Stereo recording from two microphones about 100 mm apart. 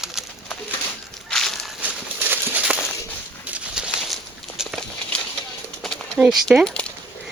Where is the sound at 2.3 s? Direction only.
20° right (ahead or behind).